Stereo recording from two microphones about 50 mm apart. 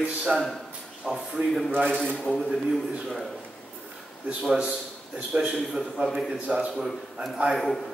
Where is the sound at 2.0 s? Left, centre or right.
Centre.